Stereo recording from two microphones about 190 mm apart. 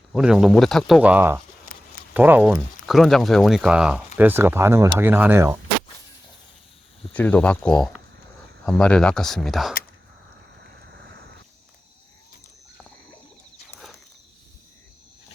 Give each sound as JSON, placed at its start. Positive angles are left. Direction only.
{"t": 0.1, "sound": "speech", "side_deg": -5}
{"t": 7.1, "sound": "speech", "side_deg": 10}
{"t": 10.7, "sound": "vehicle", "side_deg": -60}
{"t": 13.7, "sound": "a sound", "side_deg": 0}